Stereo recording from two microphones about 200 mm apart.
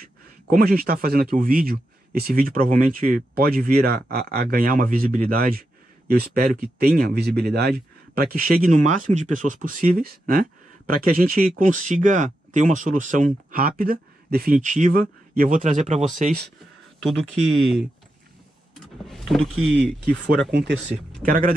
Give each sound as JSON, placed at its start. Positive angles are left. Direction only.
{"t": 0.5, "sound": "speech", "side_deg": -45}
{"t": 17.0, "sound": "speech", "side_deg": 0}
{"t": 19.0, "sound": "speech", "side_deg": 0}
{"t": 21.1, "sound": "speech", "side_deg": -40}